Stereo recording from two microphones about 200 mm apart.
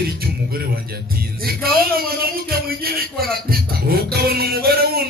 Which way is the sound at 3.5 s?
50° right (ahead or behind).